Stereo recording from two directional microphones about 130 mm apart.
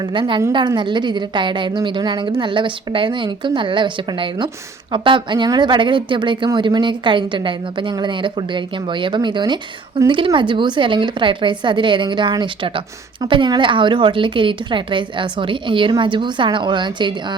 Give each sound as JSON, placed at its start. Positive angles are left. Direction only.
{"t": 0.0, "sound": "a woman's voice", "side_deg": -40}